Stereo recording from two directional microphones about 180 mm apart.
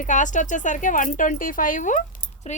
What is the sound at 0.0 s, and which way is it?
Speech, 45° left (ahead or behind).